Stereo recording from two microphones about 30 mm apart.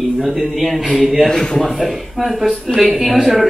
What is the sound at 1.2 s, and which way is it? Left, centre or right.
Speech, centre.